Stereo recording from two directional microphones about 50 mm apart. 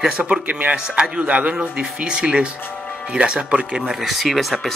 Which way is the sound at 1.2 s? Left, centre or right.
Right.